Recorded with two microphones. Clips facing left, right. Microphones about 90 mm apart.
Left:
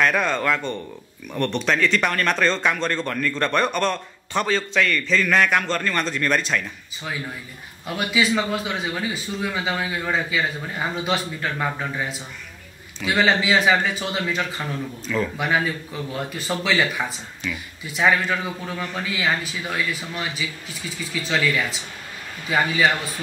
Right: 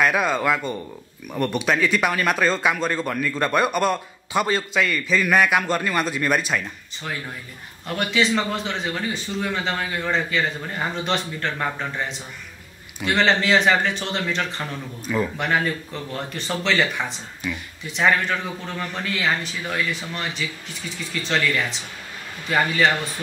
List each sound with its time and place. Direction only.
0.0 s speech: 5° right (ahead or behind)
7.8 s a man's voice: 5° left (ahead or behind)
15.0 s speech: 10° right (ahead or behind)
15.3 s a man's voice: 5° left (ahead or behind)